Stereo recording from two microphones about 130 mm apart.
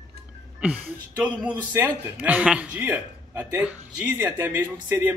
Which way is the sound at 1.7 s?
15° right (ahead or behind).